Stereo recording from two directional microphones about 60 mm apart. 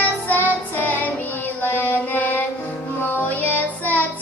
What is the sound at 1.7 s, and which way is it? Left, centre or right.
Mantra, left.